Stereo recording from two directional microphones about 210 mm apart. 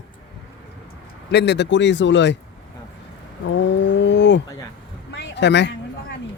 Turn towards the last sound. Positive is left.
turn(degrees=55)  # may be behind; listen again after turning